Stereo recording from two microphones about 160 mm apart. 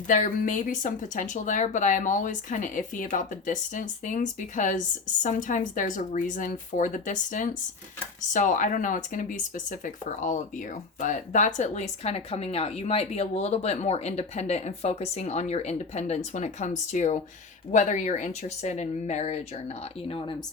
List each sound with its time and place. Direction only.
0.1 s speech: 55° left (ahead or behind); by 20.3 s 40° left (ahead or behind)